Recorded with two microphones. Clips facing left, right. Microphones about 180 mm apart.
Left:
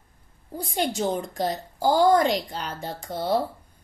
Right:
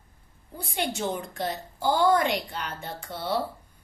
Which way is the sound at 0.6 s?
40° left (ahead or behind).